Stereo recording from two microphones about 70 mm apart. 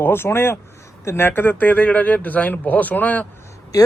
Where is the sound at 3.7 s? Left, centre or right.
Left.